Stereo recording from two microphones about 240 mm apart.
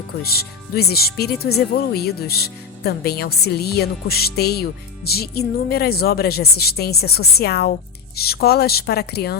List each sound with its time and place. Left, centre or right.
0.8 s speech: left